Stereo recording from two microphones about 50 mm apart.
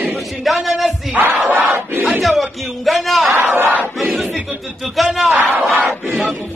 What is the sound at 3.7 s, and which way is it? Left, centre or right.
Speech, right.